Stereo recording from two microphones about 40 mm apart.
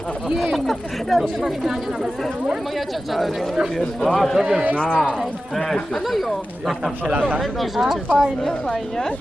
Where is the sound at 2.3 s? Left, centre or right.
Right.